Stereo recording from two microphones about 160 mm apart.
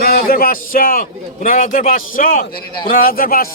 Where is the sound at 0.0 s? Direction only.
65° left (ahead or behind).